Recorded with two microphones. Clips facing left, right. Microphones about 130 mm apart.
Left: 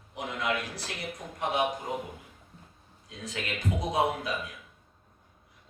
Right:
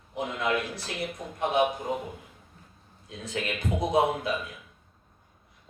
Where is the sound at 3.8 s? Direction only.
25° right (ahead or behind).